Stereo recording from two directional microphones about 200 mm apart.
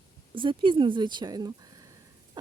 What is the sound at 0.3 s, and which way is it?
Speech, 25° right (ahead or behind).